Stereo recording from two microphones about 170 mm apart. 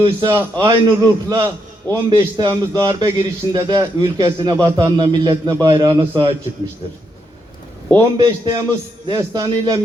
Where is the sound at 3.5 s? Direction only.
20° right (ahead or behind).